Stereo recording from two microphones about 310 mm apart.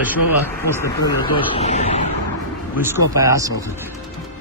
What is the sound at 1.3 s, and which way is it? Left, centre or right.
Speech, left.